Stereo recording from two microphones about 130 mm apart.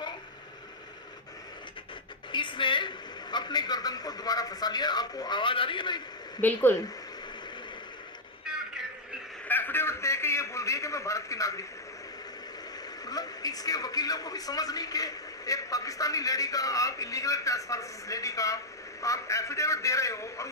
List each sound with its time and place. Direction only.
2.3 s a woman's voice: 40° left (ahead or behind)
6.4 s speech: 15° left (ahead or behind)
9.5 s a sound: 15° left (ahead or behind)
13.0 s speech: 30° left (ahead or behind)